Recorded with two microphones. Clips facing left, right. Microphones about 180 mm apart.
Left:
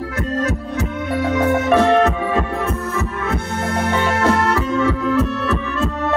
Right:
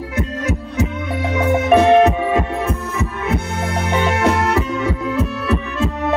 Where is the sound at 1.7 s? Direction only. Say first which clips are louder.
Right 5 dB; 15° right (ahead or behind).